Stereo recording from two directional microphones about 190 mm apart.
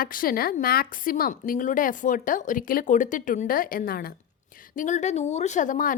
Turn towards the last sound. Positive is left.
turn(degrees=45)  # may be behind; listen again after turning